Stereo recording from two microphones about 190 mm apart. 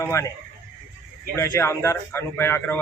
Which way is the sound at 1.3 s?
15° left (ahead or behind).